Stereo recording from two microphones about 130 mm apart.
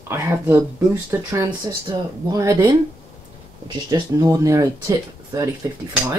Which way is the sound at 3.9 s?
25° right (ahead or behind).